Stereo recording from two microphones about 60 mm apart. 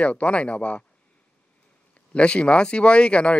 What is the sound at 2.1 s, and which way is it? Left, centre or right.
A man's voice, centre.